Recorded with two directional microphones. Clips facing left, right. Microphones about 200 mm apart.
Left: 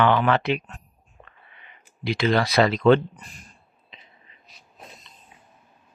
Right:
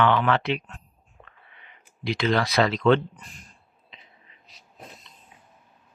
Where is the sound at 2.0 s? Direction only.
5° left (ahead or behind).